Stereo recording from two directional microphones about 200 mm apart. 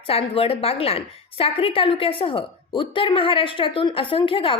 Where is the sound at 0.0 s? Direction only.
30° left (ahead or behind).